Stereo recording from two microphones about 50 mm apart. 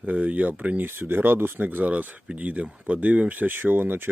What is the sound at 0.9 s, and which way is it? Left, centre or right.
Speech, right.